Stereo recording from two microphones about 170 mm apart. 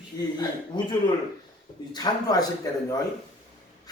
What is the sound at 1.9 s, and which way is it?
Speech, 25° left (ahead or behind).